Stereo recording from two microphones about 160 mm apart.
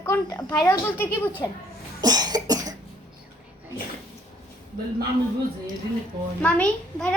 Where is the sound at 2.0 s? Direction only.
25° right (ahead or behind).